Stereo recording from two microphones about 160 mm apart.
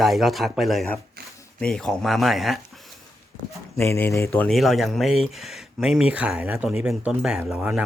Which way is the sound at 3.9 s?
15° left (ahead or behind).